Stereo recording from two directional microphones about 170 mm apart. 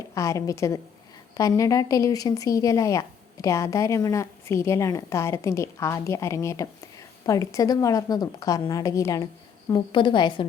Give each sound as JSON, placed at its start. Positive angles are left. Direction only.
{"t": 0.1, "sound": "a woman's voice", "side_deg": 15}